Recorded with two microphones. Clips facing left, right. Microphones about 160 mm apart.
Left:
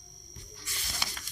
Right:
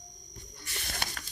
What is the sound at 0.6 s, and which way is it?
Snake, 60° right (ahead or behind).